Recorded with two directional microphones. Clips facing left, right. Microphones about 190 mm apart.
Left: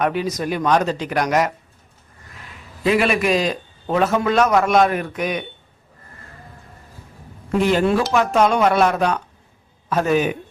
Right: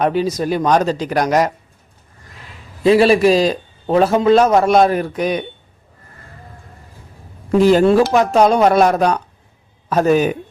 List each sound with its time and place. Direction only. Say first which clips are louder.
0.0 s a man's voice: right 4 dB; 30° right (ahead or behind)
2.8 s a man's voice: right 7 dB; 30° right (ahead or behind)
7.6 s a man's voice: right 7 dB; 35° right (ahead or behind)